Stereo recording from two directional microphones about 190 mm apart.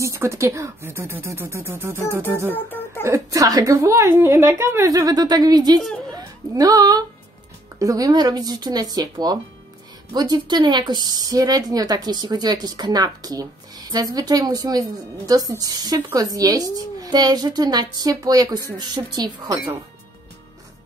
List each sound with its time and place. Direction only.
0.0 s a woman's voice: 15° right (ahead or behind)
3.0 s a woman's voice: 15° right (ahead or behind)